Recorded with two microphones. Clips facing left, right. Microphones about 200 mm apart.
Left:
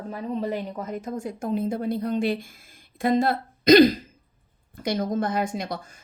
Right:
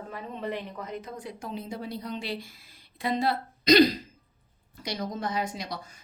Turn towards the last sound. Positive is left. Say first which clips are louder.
# left 5 dB
turn(degrees=50)  # may be behind; listen again after turning